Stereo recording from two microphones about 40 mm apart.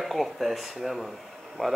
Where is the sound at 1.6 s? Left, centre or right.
Left.